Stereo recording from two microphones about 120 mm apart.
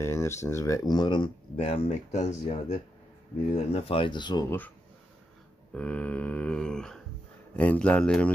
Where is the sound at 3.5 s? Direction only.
60° left (ahead or behind); by 4.5 s 35° left (ahead or behind).